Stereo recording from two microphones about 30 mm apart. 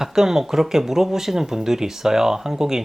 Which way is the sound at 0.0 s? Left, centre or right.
Centre.